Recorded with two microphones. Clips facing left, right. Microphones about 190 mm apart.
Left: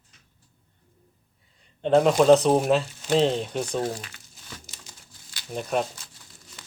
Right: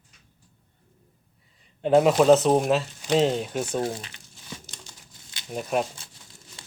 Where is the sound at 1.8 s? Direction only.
5° right (ahead or behind).